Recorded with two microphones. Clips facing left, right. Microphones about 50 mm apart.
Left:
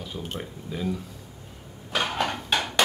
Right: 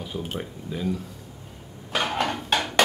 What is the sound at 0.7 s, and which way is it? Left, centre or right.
Speech, centre.